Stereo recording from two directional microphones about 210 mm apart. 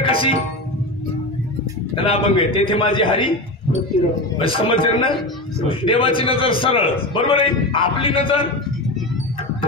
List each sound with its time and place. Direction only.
0.0 s music: 25° left (ahead or behind)
2.0 s a man's voice: 25° left (ahead or behind)
4.4 s a man's voice: 25° left (ahead or behind)